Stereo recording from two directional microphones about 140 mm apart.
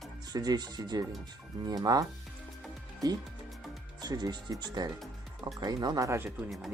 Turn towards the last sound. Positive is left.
turn(degrees=0)  # may be behind; listen again after turning